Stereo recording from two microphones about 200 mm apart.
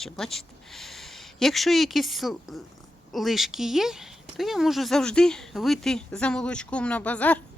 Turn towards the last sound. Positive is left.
turn(degrees=5)  # may be behind; listen again after turning